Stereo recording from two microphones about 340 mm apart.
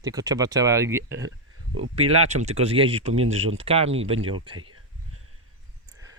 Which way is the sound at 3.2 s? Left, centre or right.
Right.